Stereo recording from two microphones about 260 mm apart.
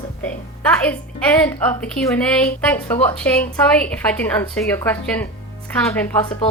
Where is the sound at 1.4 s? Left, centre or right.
Centre.